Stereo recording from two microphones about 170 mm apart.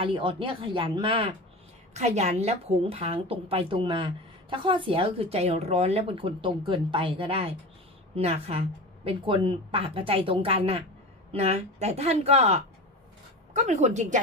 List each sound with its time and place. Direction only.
0.0 s a woman's voice: 30° right (ahead or behind)